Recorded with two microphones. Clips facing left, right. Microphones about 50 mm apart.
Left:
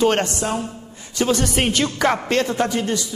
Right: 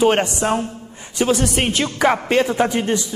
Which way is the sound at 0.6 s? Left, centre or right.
Right.